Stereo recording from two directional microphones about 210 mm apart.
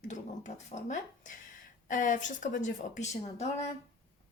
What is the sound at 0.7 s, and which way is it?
Speech, 35° left (ahead or behind).